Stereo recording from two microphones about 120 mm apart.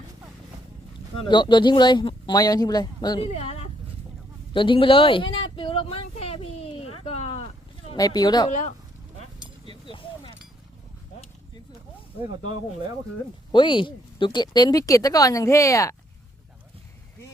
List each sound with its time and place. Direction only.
1.3 s speech: 40° left (ahead or behind)
3.2 s speech: 60° left (ahead or behind)
4.5 s a sound: 45° left (ahead or behind); by 7.4 s 60° left (ahead or behind)
7.9 s speech: 30° left (ahead or behind)
8.4 s speech: 90° left
9.6 s a sound: 45° left (ahead or behind)
13.5 s speech: 40° left (ahead or behind); by 16.0 s 25° left (ahead or behind)